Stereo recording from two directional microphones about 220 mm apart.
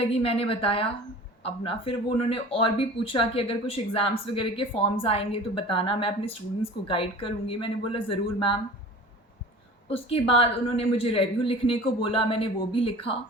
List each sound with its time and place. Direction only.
0.0 s speech: 25° left (ahead or behind)
9.9 s speech: 25° left (ahead or behind)